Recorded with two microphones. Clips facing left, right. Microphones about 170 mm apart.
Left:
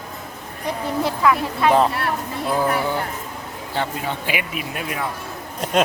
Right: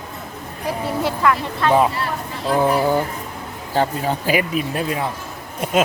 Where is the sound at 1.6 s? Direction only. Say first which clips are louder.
Even; 10° left (ahead or behind).